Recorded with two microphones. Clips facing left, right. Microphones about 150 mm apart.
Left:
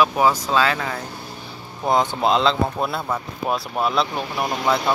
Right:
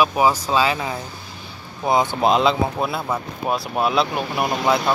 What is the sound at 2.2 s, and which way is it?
Speech, 15° right (ahead or behind).